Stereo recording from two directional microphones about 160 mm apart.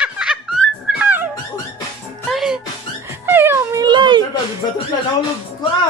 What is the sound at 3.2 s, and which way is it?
Music, 15° right (ahead or behind).